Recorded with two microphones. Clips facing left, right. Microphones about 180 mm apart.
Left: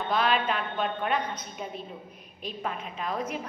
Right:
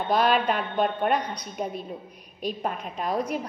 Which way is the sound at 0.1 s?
45° right (ahead or behind).